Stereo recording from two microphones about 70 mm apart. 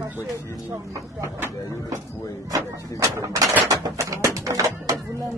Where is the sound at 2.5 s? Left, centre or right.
Right.